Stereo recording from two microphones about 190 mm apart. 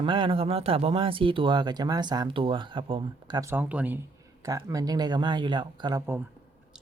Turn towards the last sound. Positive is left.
turn(degrees=-25)  # may be behind; listen again after turning